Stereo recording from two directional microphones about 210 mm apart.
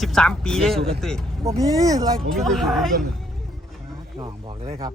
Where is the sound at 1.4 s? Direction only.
15° right (ahead or behind).